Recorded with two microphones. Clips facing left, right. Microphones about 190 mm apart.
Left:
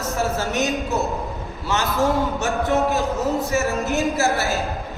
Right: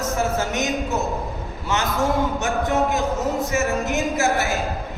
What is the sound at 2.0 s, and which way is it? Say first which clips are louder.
A man's voice: left 1 dB; 15° right (ahead or behind).